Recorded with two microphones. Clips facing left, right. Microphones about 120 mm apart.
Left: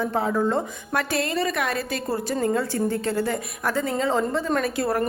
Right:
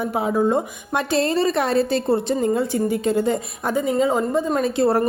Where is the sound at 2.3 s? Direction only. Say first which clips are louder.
Right 3 dB; 15° right (ahead or behind).